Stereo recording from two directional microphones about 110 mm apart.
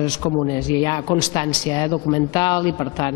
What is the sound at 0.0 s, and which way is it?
Speech, 40° left (ahead or behind).